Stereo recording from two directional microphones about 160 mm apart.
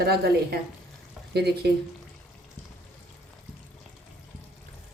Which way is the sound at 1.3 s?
90° right.